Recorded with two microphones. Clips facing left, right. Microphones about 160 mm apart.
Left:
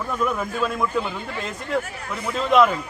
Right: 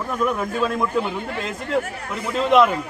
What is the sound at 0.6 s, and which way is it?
Speech, centre (ahead or behind).